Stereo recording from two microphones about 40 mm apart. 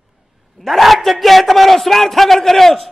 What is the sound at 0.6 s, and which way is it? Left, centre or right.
A man's voice, centre.